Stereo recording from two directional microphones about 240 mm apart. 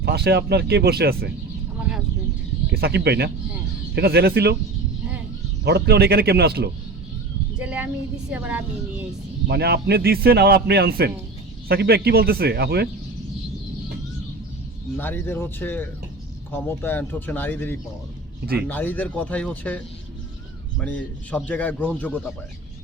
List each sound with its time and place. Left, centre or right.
0.0 s a man's voice: right
2.6 s a man's voice: right
5.6 s a man's voice: right
7.6 s a sound: centre
8.3 s a woman's voice: centre
9.5 s a man's voice: right
14.9 s speech: centre
18.4 s a man's voice: right
18.7 s speech: centre